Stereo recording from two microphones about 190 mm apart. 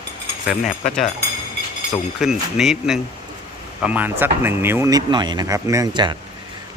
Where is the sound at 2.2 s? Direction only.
Centre (ahead or behind); by 6.2 s 20° right (ahead or behind).